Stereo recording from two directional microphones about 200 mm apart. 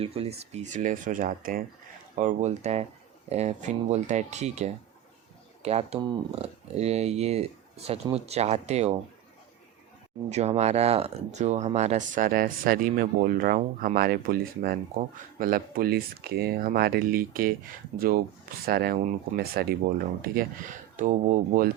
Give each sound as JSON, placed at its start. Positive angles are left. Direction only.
{"t": 0.0, "sound": "speech", "side_deg": -30}
{"t": 10.2, "sound": "speech", "side_deg": -35}